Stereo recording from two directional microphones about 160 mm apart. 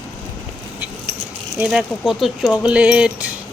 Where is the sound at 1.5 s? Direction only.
5° right (ahead or behind).